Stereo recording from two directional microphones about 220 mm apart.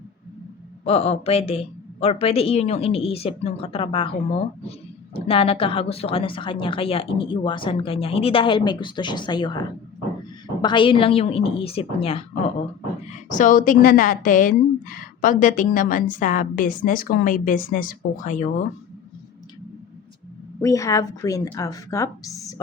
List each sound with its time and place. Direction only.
0.9 s a woman's voice: 25° left (ahead or behind)
13.1 s a woman's voice: 35° left (ahead or behind)
20.6 s a woman's voice: 15° left (ahead or behind)